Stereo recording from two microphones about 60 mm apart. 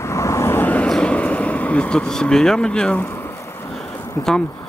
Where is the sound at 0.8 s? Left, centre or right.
Centre.